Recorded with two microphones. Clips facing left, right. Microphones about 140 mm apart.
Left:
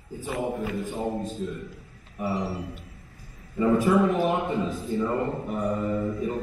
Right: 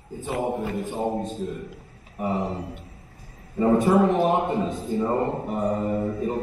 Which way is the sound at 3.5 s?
30° right (ahead or behind).